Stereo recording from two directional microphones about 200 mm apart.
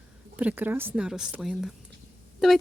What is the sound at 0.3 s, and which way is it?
Speech, 10° right (ahead or behind).